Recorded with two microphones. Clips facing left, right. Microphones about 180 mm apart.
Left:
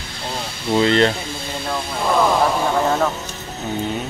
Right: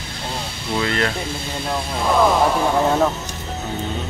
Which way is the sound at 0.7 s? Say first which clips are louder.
Left 6 dB; 25° left (ahead or behind).